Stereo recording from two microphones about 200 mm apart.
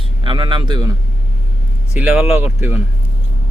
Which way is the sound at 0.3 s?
25° right (ahead or behind).